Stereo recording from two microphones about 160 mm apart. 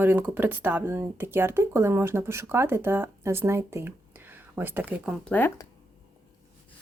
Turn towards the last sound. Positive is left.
turn(degrees=10)  # may be behind; listen again after turning